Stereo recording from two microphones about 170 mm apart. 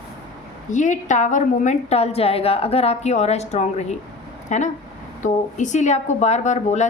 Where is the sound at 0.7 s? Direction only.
45° left (ahead or behind).